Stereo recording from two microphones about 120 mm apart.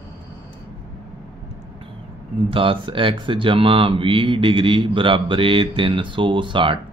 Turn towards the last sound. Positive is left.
turn(degrees=-45)  # may be behind; listen again after turning